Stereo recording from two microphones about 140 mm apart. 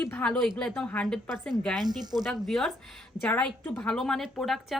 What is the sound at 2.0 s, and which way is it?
Speech, 30° right (ahead or behind).